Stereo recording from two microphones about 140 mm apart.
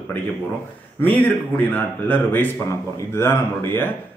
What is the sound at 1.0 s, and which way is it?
A man's voice, 15° left (ahead or behind).